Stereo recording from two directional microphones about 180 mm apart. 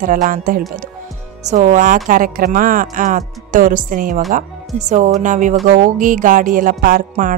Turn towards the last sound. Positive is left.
turn(degrees=-50)  # may be behind; listen again after turning